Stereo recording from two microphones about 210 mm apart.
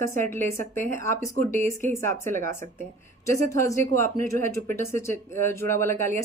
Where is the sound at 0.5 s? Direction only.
40° right (ahead or behind).